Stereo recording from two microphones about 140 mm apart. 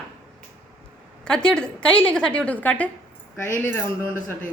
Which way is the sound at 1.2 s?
5° left (ahead or behind).